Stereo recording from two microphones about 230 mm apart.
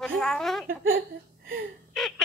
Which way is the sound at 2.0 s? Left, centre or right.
Centre.